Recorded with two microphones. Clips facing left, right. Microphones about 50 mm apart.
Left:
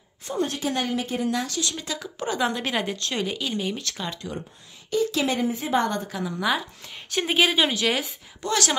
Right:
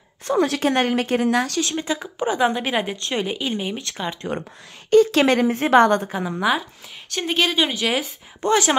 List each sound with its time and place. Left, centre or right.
0.3 s a woman's voice: right
0.6 s speech: right
1.8 s speech: right
4.9 s a woman's voice: right
6.0 s speech: right
7.1 s speech: centre
7.7 s a woman's voice: centre
8.4 s speech: right